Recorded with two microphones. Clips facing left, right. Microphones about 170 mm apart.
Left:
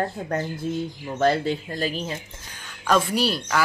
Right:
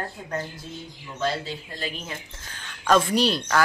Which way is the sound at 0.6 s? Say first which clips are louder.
Left 11 dB; 55° left (ahead or behind).